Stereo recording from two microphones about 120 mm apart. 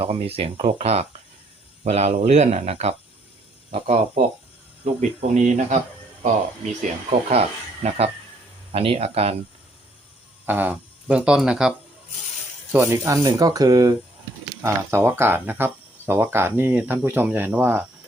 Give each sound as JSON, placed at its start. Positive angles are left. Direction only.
{"t": 0.0, "sound": "speech", "side_deg": -55}
{"t": 4.9, "sound": "speech", "side_deg": -85}
{"t": 7.1, "sound": "speech", "side_deg": -60}
{"t": 10.4, "sound": "speech", "side_deg": -15}
{"t": 12.7, "sound": "speech", "side_deg": -20}
{"t": 13.1, "sound": "speech", "side_deg": -30}
{"t": 14.6, "sound": "speech", "side_deg": -20}